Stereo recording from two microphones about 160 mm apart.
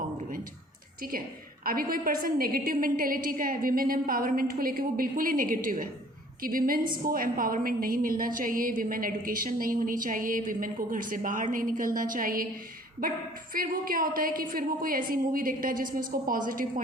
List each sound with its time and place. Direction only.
1.6 s a woman's voice: 65° right (ahead or behind)